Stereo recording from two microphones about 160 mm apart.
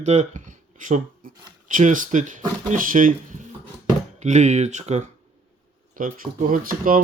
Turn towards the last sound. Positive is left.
turn(degrees=-65)  # may be behind; listen again after turning